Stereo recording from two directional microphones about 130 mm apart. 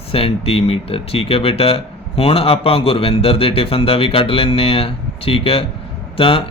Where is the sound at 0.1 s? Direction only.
45° left (ahead or behind).